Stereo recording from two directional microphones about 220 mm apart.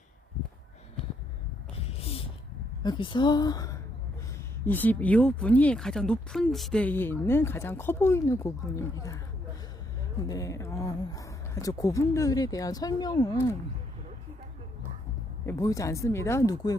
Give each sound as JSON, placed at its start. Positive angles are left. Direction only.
{"t": 1.7, "sound": "a sound", "side_deg": 25}
{"t": 2.8, "sound": "speech", "side_deg": 20}
{"t": 15.4, "sound": "speech", "side_deg": 15}